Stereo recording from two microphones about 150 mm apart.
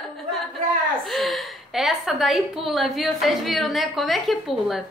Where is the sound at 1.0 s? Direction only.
Centre (ahead or behind).